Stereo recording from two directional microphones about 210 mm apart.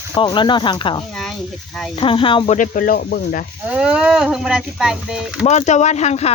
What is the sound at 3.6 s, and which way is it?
Speech, 5° right (ahead or behind).